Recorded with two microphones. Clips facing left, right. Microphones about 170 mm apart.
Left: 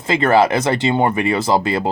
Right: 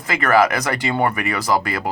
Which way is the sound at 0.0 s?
25° left (ahead or behind).